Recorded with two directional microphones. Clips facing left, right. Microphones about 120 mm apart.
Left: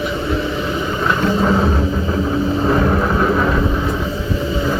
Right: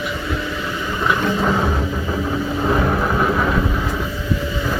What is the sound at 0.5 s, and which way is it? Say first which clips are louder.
Vehicle: left 5 dB; 25° left (ahead or behind).